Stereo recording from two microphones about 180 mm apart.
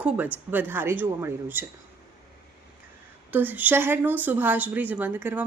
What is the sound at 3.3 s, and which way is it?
A woman's voice, 10° right (ahead or behind).